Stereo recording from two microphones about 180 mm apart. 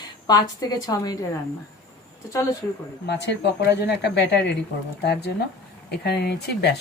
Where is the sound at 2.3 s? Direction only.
20° left (ahead or behind).